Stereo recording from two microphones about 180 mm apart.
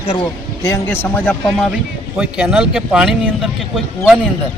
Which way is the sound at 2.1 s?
5° right (ahead or behind).